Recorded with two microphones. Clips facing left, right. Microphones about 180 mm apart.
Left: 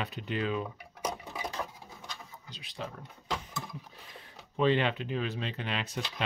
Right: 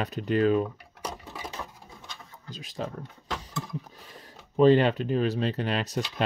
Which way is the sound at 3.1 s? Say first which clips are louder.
Right 2 dB; centre (ahead or behind).